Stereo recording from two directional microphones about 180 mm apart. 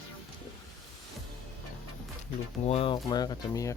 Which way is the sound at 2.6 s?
35° left (ahead or behind).